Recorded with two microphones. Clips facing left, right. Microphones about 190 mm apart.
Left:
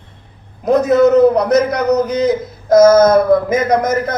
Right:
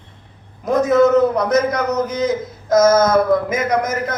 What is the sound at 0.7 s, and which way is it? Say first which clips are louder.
A man's voice: left 3 dB; 35° left (ahead or behind).